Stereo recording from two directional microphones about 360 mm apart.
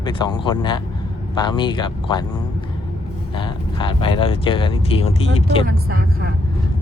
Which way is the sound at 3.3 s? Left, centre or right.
Centre.